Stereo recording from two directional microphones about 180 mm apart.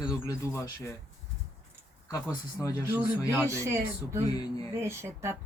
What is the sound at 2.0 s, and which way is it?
Speech, 20° left (ahead or behind).